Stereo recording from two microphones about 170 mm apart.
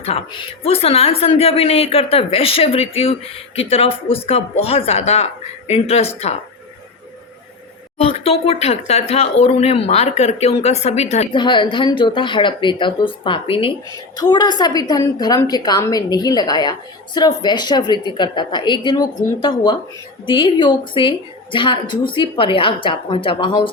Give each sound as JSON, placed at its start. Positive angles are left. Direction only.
{"t": 0.0, "sound": "speech", "side_deg": 35}
{"t": 7.9, "sound": "speech", "side_deg": 35}
{"t": 11.3, "sound": "a woman's voice", "side_deg": 30}